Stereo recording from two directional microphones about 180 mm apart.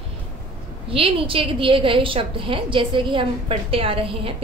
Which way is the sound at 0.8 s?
30° right (ahead or behind).